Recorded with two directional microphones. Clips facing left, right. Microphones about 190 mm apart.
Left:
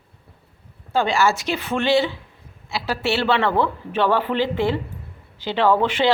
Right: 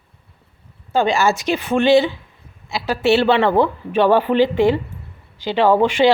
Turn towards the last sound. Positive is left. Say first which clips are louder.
# right 4 dB
turn(degrees=-15)  # may be behind; listen again after turning